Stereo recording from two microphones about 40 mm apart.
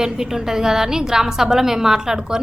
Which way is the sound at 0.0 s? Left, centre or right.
Centre.